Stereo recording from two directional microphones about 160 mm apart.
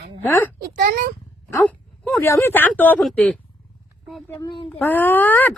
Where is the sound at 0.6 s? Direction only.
75° right (ahead or behind).